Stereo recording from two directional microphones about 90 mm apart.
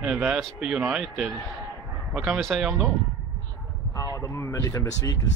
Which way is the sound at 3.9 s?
35° left (ahead or behind).